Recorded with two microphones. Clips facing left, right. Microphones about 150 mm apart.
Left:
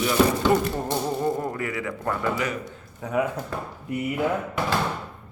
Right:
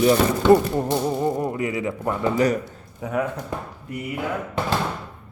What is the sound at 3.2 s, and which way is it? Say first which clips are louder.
Speech: even; 5° left (ahead or behind).